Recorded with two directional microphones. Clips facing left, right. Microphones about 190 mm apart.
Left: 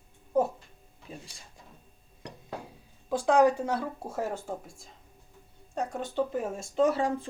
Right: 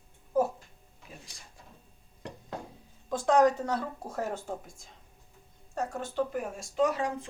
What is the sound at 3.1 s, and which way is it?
Speech, 10° left (ahead or behind).